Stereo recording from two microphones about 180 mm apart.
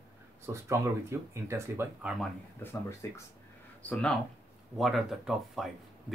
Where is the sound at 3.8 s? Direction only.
5° left (ahead or behind).